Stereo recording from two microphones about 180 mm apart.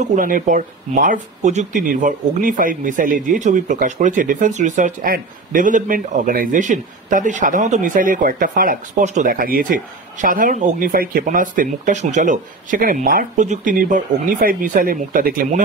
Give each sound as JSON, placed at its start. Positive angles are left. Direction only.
{"t": 0.0, "sound": "speech", "side_deg": -45}